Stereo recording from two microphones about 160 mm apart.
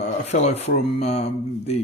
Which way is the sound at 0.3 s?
45° left (ahead or behind).